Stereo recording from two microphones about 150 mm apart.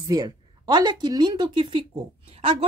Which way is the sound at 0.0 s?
25° right (ahead or behind).